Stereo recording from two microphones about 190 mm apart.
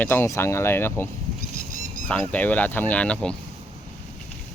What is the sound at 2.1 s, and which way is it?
Speech, 5° left (ahead or behind).